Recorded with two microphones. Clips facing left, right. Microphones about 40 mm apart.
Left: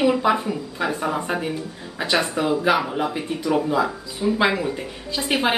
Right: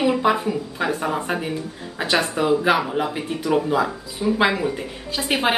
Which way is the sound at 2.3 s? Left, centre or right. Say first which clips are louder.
Right 3 dB; right.